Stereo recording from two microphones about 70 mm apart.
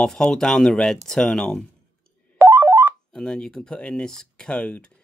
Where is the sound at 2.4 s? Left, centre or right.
Right.